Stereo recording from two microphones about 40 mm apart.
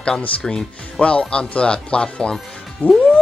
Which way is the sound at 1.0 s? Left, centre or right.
Left.